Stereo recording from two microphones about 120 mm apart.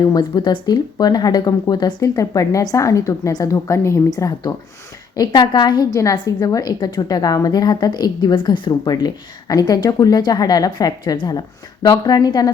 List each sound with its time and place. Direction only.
0.1 s a woman's voice: 35° left (ahead or behind)